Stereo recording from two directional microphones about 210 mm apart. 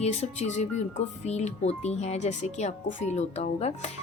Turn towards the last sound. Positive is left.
turn(degrees=30)  # may be behind; listen again after turning